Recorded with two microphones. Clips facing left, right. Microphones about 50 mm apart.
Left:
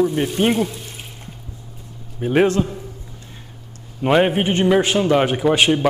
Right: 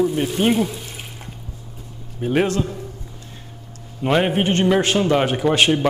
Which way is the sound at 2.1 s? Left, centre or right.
Centre.